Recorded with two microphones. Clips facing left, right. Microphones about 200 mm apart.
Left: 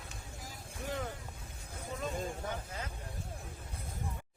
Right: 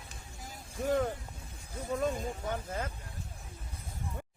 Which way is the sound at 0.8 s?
45° right (ahead or behind).